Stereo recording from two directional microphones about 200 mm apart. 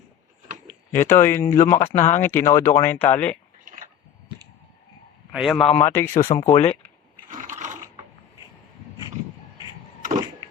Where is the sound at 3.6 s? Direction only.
45° right (ahead or behind).